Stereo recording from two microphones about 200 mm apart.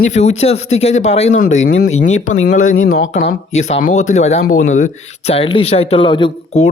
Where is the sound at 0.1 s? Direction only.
35° left (ahead or behind).